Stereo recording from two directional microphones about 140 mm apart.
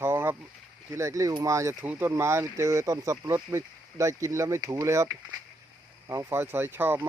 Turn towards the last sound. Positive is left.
turn(degrees=-15)  # may be behind; listen again after turning